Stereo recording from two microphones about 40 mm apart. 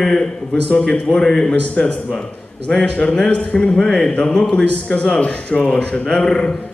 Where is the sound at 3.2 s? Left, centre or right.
Left.